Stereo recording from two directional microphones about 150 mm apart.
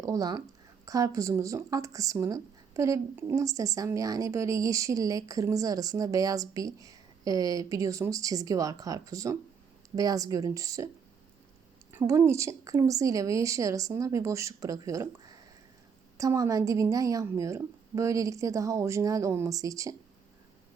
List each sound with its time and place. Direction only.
0.0 s a woman's voice: 25° right (ahead or behind)
11.9 s speech: 20° right (ahead or behind)
16.1 s speech: 20° right (ahead or behind)